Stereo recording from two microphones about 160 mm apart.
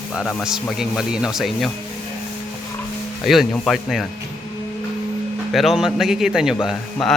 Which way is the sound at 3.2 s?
Centre (ahead or behind).